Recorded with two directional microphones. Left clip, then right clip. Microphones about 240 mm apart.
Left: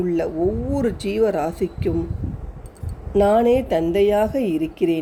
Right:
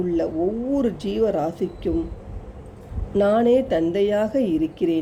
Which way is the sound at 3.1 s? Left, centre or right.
Centre.